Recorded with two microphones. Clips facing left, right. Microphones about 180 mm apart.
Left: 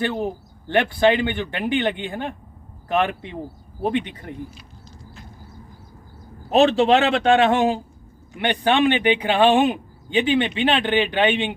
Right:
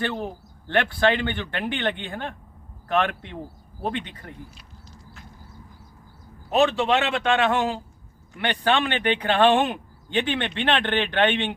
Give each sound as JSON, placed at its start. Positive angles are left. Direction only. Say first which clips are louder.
{"t": 0.0, "sound": "speech", "louder": "left 4 dB", "side_deg": 10}
{"t": 6.5, "sound": "a man's voice", "louder": "left 5 dB", "side_deg": 30}